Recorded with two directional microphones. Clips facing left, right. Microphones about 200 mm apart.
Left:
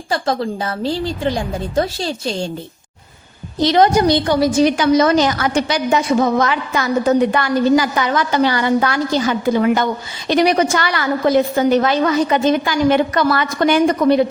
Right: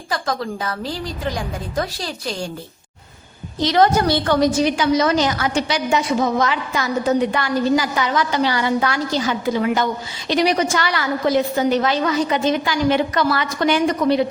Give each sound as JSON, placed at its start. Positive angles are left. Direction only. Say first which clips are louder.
{"t": 0.1, "sound": "a woman's voice", "louder": "left 4 dB", "side_deg": 30}
{"t": 3.8, "sound": "a woman's voice", "louder": "left 2 dB", "side_deg": 20}
{"t": 4.8, "sound": "a woman's voice", "louder": "left 4 dB", "side_deg": 50}